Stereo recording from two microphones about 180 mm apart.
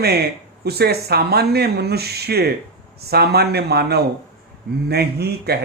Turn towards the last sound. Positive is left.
turn(degrees=-65)  # may be behind; listen again after turning